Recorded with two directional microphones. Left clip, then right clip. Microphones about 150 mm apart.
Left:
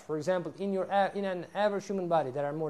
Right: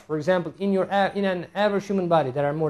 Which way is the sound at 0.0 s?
30° left (ahead or behind).